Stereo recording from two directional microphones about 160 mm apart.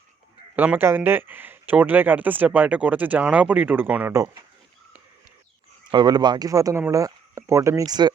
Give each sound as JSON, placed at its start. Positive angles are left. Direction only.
{"t": 0.5, "sound": "speech", "side_deg": -10}
{"t": 5.9, "sound": "speech", "side_deg": -25}